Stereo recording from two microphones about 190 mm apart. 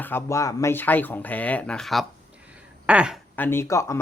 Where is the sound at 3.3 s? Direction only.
10° left (ahead or behind).